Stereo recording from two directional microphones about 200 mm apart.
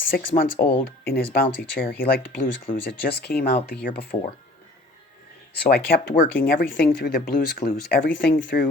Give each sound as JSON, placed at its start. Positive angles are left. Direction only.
{"t": 0.1, "sound": "speech", "side_deg": 45}
{"t": 5.5, "sound": "speech", "side_deg": 50}